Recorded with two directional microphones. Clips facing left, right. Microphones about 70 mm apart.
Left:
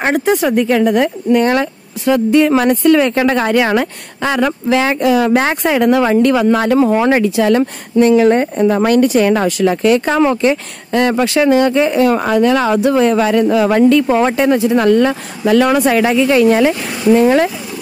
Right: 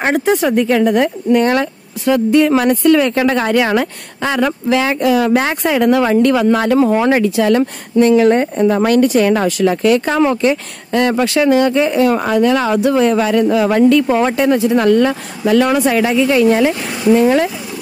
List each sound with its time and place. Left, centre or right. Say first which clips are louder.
0.0 s speech: even; centre
1.5 s speech: left 1 dB; centre; by 10.6 s left
10.9 s speech: left 1 dB; left
15.4 s speech: left 1 dB; left
17.1 s speech: left 1 dB; left